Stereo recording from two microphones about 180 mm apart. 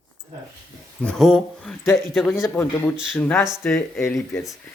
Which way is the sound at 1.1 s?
Centre (ahead or behind).